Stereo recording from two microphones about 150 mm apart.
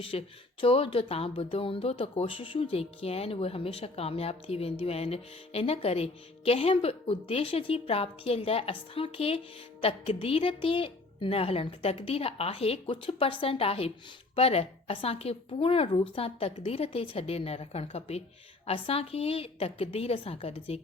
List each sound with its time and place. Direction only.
0.0 s speech: 40° left (ahead or behind)